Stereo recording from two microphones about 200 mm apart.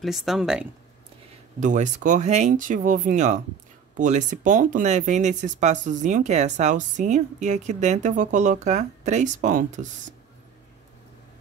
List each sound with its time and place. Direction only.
0.0 s speech: centre (ahead or behind)
1.6 s speech: 40° right (ahead or behind)